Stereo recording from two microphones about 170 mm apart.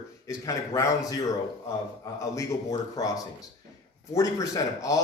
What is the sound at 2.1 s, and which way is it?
Speech, 20° left (ahead or behind).